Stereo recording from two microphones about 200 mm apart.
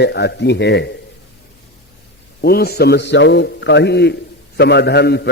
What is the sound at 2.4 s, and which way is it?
A man's voice, 50° left (ahead or behind).